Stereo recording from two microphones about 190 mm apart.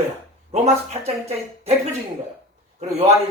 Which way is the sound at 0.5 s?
35° right (ahead or behind).